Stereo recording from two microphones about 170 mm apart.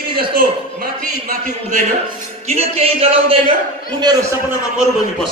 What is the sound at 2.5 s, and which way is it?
Speech, 40° right (ahead or behind).